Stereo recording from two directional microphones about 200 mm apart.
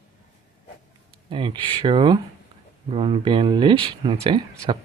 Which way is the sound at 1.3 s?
25° right (ahead or behind).